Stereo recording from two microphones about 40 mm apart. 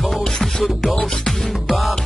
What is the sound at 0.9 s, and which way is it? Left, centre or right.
Speech, centre.